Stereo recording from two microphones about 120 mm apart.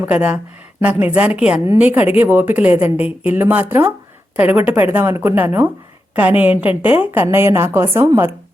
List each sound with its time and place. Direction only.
0.0 s a woman's voice: 10° right (ahead or behind)